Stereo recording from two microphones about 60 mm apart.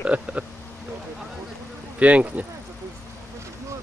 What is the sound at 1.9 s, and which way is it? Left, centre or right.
Speech, right.